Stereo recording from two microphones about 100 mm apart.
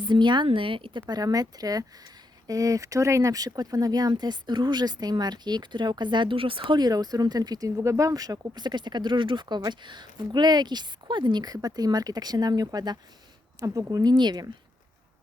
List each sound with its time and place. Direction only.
0.0 s speech: 50° right (ahead or behind)
1.1 s speech: 40° right (ahead or behind)